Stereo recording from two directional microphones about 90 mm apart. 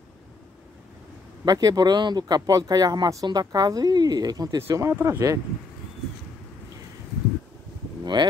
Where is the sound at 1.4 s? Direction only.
45° right (ahead or behind).